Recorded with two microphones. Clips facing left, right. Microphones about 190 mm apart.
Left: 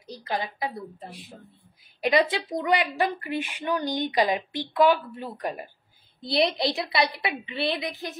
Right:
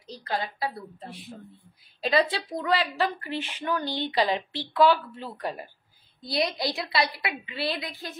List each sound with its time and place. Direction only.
0.0 s a woman's voice: 15° left (ahead or behind)
6.2 s a woman's voice: 25° left (ahead or behind)